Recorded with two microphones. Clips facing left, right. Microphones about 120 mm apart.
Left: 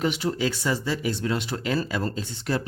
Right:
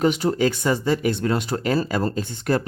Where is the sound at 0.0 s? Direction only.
40° right (ahead or behind).